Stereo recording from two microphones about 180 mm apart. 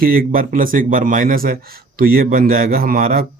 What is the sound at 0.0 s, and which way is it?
Speech, 55° right (ahead or behind).